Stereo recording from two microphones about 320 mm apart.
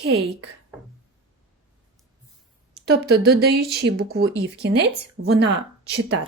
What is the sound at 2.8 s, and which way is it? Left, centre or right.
Speech, right.